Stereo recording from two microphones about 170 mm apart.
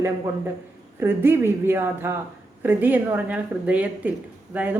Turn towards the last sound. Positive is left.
turn(degrees=-10)  # may be behind; listen again after turning